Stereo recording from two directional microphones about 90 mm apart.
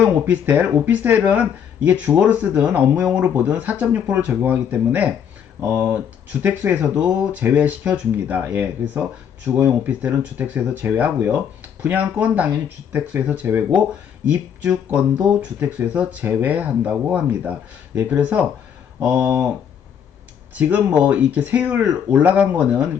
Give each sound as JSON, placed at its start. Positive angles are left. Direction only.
{"t": 0.0, "sound": "speech", "side_deg": -20}
{"t": 19.1, "sound": "speech", "side_deg": -30}
{"t": 20.6, "sound": "speech", "side_deg": -20}